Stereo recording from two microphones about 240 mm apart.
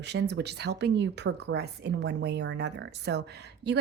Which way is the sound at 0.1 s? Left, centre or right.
Right.